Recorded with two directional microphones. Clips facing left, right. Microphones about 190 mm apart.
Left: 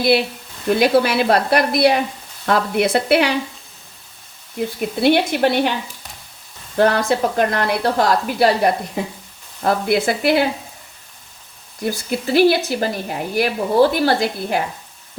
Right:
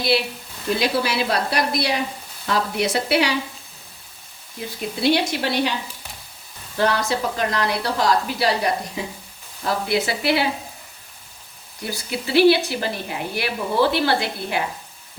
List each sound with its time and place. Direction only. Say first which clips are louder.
0.7 s a woman's voice: left 7 dB; 55° left (ahead or behind)
5.0 s a woman's voice: left 5 dB; 55° left (ahead or behind)
6.7 s a woman's voice: left 5 dB; 55° left (ahead or behind)
11.9 s a woman's voice: left 6 dB; 45° left (ahead or behind)